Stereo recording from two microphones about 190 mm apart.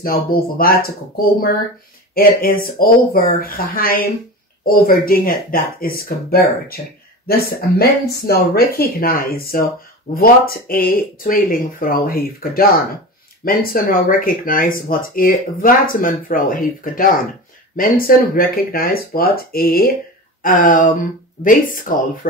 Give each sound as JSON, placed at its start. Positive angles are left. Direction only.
{"t": 0.0, "sound": "speech", "side_deg": 50}
{"t": 8.2, "sound": "speech", "side_deg": 55}